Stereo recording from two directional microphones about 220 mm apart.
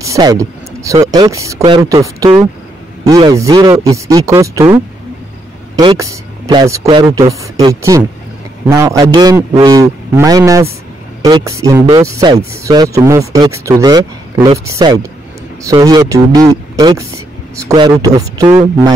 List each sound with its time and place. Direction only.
0.0 s speech: 15° right (ahead or behind)
5.8 s speech: 15° right (ahead or behind)